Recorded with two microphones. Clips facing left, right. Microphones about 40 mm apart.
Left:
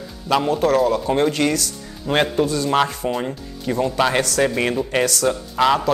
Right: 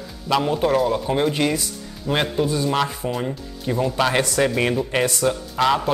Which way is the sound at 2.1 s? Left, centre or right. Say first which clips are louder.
Left 3 dB; centre.